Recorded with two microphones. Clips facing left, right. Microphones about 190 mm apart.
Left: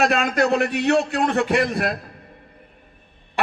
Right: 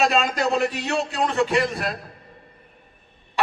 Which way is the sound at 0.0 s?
60° left (ahead or behind).